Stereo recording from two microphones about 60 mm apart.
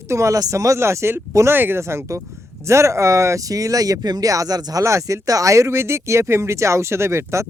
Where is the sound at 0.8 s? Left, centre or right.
Right.